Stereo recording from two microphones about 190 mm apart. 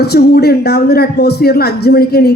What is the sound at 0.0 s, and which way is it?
A man's voice, 55° left (ahead or behind).